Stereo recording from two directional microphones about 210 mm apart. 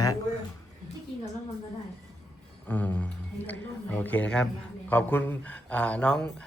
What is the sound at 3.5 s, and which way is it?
Speech, 10° left (ahead or behind).